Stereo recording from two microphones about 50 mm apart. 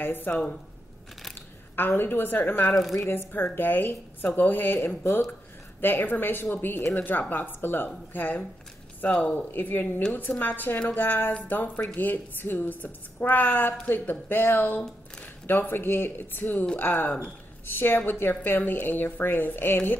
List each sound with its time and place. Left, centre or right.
0.0 s a woman's voice: left
0.3 s speech: left
1.8 s speech: left
2.7 s speech: centre
3.1 s speech: left
9.1 s speech: left
9.5 s speech: left